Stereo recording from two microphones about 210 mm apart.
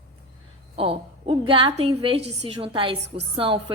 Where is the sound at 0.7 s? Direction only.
25° right (ahead or behind).